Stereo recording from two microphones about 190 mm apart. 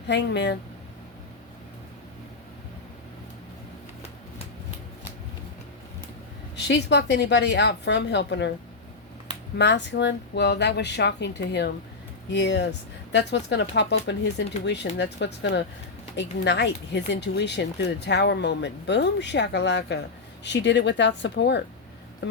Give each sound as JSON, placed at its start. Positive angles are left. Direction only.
{"t": 0.1, "sound": "speech", "side_deg": 65}
{"t": 6.6, "sound": "speech", "side_deg": 65}
{"t": 9.6, "sound": "speech", "side_deg": 65}